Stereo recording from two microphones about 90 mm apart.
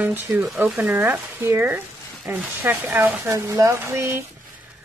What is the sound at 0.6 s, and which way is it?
Speech, 15° right (ahead or behind).